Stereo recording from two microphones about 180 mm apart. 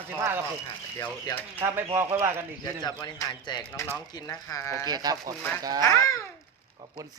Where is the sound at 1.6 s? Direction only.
15° right (ahead or behind).